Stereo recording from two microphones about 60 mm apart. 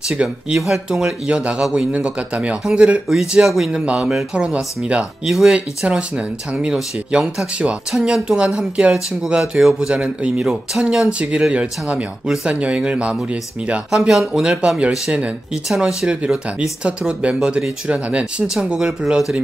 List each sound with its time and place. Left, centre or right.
0.1 s speech: centre
0.6 s speech: centre
3.8 s speech: centre
13.8 s speech: centre
18.6 s speech: centre